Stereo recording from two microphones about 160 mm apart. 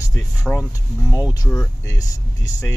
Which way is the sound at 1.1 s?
20° left (ahead or behind).